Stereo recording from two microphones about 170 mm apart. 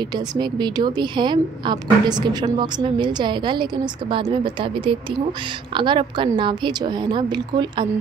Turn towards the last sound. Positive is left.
turn(degrees=-25)  # may be behind; listen again after turning